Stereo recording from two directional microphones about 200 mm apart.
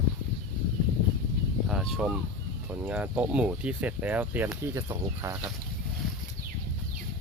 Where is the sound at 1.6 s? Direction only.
Centre (ahead or behind).